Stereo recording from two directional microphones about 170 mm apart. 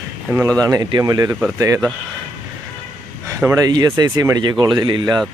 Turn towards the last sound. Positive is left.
turn(degrees=-25)  # may be behind; listen again after turning